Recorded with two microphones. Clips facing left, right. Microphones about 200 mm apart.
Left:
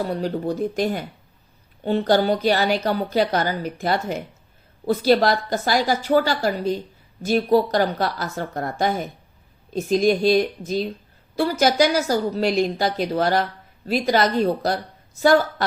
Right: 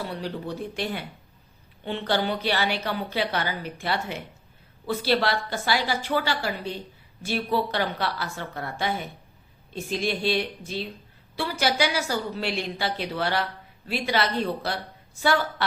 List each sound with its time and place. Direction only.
0.0 s a woman's voice: 40° left (ahead or behind)